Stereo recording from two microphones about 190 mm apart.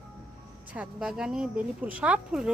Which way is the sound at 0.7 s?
5° right (ahead or behind).